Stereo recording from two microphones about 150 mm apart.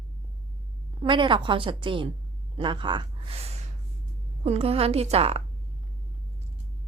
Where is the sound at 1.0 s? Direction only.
35° right (ahead or behind).